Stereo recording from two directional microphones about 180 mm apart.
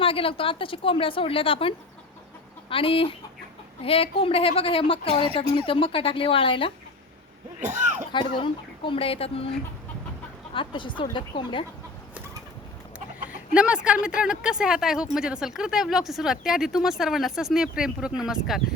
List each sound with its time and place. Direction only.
0.0 s a woman's voice: 30° left (ahead or behind)
7.6 s a sound: 45° right (ahead or behind)
8.1 s a woman's voice: 30° left (ahead or behind)
10.5 s a woman's voice: 25° left (ahead or behind)
13.5 s speech: 5° right (ahead or behind)